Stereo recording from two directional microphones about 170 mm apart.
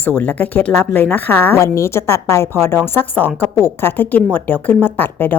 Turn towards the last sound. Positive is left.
turn(degrees=10)  # may be behind; listen again after turning